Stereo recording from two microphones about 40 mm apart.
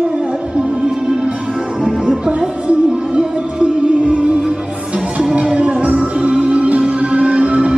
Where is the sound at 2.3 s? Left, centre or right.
Right.